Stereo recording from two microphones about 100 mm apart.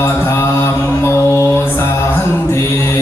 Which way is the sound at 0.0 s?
25° left (ahead or behind).